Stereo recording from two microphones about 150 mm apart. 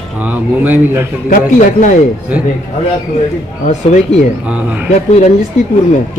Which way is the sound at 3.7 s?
45° left (ahead or behind).